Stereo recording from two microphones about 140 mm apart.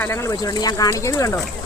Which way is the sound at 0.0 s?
20° left (ahead or behind).